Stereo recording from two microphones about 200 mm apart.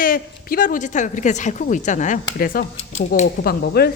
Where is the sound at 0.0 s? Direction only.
45° left (ahead or behind).